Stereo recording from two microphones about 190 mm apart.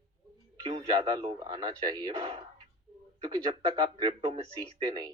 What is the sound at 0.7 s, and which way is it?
A man's voice, 20° right (ahead or behind).